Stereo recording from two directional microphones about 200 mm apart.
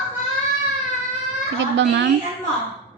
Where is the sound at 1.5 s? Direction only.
60° right (ahead or behind).